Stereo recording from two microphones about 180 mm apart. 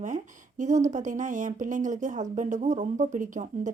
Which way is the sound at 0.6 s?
40° right (ahead or behind).